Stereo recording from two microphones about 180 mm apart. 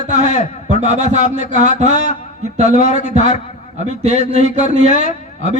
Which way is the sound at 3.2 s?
40° left (ahead or behind).